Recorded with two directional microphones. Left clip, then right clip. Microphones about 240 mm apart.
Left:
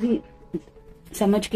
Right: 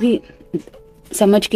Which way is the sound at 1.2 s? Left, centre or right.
Right.